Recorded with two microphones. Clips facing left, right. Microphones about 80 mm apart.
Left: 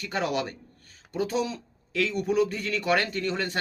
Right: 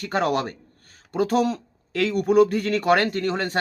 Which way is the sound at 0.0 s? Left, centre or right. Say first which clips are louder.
Right 5 dB; right.